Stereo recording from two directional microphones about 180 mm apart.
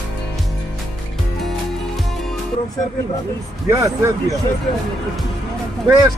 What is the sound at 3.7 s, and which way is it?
Speech, 20° right (ahead or behind).